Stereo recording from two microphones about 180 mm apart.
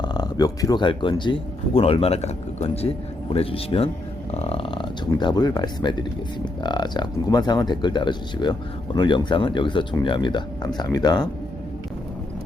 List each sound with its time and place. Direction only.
0.0 s speech: 25° left (ahead or behind)